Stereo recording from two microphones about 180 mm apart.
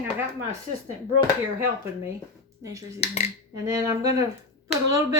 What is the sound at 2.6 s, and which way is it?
Speech, 20° right (ahead or behind).